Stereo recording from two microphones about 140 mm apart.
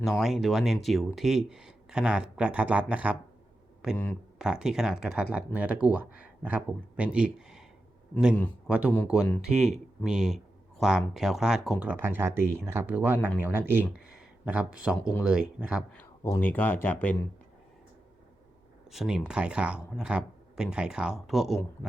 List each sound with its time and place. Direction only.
0.0 s speech: 5° right (ahead or behind)
3.9 s speech: 15° left (ahead or behind)
4.4 s speech: 5° right (ahead or behind)
8.6 s speech: 10° right (ahead or behind)
11.8 s speech: 15° right (ahead or behind)
14.2 s a sound: 10° right (ahead or behind)
15.2 s speech: 5° right (ahead or behind)
15.9 s a sound: 10° left (ahead or behind)
16.4 s speech: 15° left (ahead or behind)
18.9 s speech: 5° right (ahead or behind)